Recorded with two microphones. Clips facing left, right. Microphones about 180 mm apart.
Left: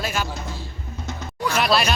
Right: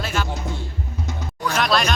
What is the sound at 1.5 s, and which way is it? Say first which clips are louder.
Speech: even; 5° left (ahead or behind).